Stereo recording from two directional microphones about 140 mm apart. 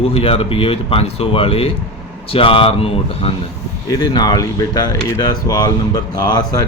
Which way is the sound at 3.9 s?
30° left (ahead or behind).